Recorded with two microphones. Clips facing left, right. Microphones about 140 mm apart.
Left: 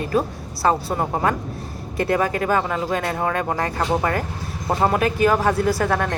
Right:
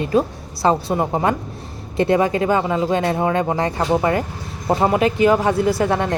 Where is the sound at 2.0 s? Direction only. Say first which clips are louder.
Right 4 dB; 20° right (ahead or behind).